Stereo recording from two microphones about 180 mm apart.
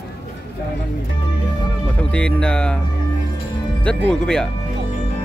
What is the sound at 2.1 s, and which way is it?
Speech, 5° left (ahead or behind).